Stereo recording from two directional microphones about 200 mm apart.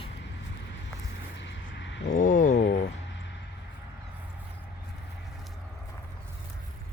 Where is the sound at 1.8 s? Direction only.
65° left (ahead or behind).